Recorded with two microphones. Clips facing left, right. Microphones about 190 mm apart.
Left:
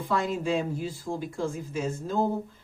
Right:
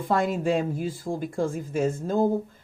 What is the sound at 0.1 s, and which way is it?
Speech, 50° right (ahead or behind).